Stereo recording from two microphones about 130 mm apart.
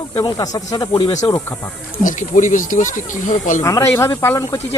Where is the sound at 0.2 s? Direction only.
25° left (ahead or behind).